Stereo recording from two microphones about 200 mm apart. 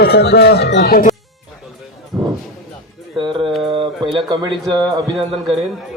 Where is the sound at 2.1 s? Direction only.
15° right (ahead or behind).